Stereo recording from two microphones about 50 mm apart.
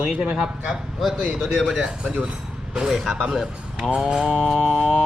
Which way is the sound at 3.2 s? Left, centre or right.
Centre.